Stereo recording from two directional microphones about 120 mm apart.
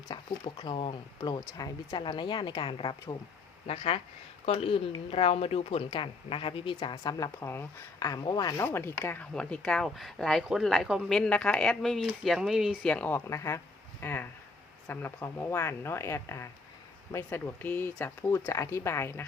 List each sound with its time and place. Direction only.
0.1 s speech: 40° left (ahead or behind)
3.7 s a woman's voice: 55° left (ahead or behind)
6.9 s speech: 30° left (ahead or behind)
7.9 s speech: 30° left (ahead or behind)
8.5 s speech: 20° left (ahead or behind)
9.3 s speech: 5° left (ahead or behind)
12.8 s speech: 10° left (ahead or behind)